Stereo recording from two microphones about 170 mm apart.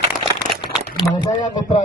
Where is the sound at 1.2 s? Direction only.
25° left (ahead or behind).